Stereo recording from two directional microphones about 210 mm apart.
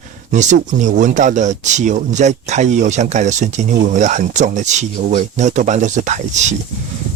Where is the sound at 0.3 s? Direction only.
35° right (ahead or behind).